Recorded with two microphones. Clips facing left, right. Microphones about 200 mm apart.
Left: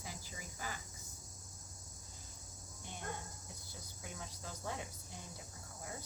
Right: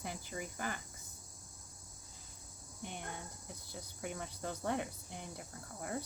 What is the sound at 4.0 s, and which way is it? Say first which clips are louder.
Speech: right 8 dB; 65° right (ahead or behind).